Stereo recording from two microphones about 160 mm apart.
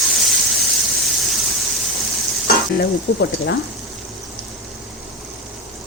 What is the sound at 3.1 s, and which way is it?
Speech, 90° left.